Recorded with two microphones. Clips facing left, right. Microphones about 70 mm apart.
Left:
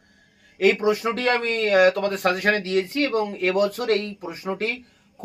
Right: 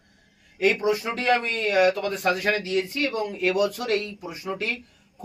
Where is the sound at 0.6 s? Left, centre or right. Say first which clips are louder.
Left 3 dB; left.